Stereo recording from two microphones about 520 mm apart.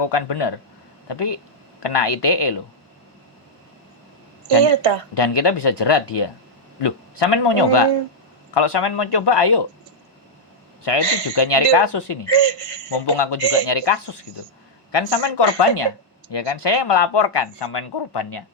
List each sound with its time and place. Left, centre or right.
0.0 s speech: left
5.1 s speech: left
10.8 s speech: left
12.4 s speech: right
12.9 s speech: left